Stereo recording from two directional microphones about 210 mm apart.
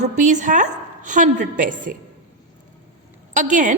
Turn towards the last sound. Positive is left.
turn(degrees=-35)  # may be behind; listen again after turning